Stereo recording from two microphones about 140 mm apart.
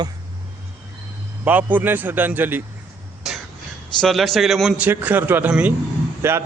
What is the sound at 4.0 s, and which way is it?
Speech, centre (ahead or behind).